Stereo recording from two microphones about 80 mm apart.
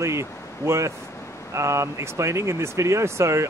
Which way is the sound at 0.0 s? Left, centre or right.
Right.